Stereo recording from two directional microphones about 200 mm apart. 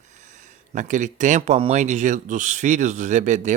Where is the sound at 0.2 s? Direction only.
40° right (ahead or behind).